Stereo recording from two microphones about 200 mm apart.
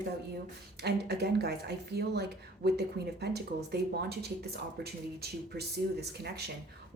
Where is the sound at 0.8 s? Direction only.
55° right (ahead or behind).